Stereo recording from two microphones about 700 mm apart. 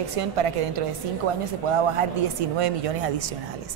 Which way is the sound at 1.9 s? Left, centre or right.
Right.